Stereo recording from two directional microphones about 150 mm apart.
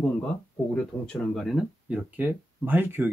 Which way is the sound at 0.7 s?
5° left (ahead or behind).